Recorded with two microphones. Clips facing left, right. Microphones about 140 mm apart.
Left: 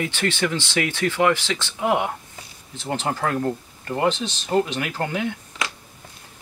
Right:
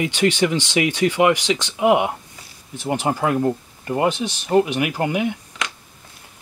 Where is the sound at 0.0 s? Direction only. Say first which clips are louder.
Right 5 dB; 15° right (ahead or behind).